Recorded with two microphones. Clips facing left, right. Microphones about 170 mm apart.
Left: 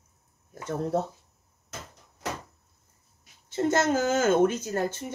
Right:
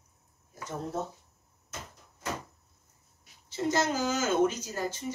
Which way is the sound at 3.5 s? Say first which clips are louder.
Left 5 dB; 50° left (ahead or behind).